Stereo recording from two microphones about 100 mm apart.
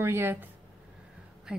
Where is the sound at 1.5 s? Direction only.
10° right (ahead or behind).